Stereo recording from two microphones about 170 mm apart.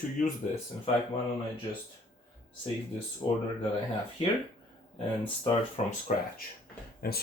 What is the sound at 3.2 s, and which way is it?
Speech, 30° left (ahead or behind).